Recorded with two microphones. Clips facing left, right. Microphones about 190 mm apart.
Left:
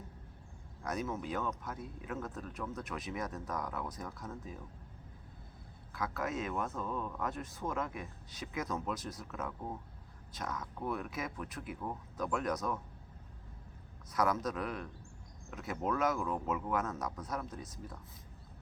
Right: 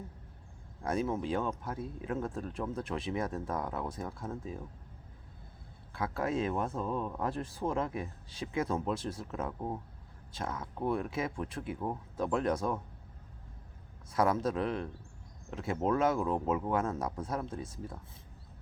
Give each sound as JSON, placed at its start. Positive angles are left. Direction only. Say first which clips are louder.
{"t": 0.8, "sound": "speech", "louder": "right 5 dB", "side_deg": -30}
{"t": 5.9, "sound": "speech", "louder": "right 4 dB", "side_deg": -30}
{"t": 14.1, "sound": "speech", "louder": "right 4 dB", "side_deg": -30}